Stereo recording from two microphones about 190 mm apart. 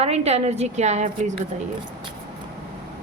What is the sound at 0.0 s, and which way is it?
A woman's voice, 35° right (ahead or behind).